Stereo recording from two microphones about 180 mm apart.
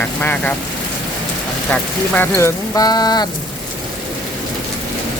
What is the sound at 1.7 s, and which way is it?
Speech, 10° left (ahead or behind).